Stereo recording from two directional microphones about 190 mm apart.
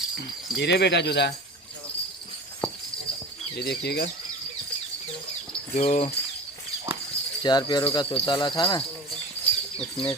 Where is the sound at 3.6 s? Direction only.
60° left (ahead or behind).